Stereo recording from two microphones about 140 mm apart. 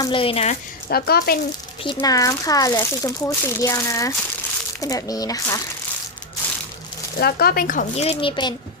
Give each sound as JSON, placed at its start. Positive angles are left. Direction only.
{"t": 0.1, "sound": "a child's voice", "side_deg": 40}
{"t": 0.9, "sound": "speech", "side_deg": 90}
{"t": 1.8, "sound": "speech", "side_deg": 35}
{"t": 7.3, "sound": "speech", "side_deg": 90}
{"t": 7.9, "sound": "a child's voice", "side_deg": 40}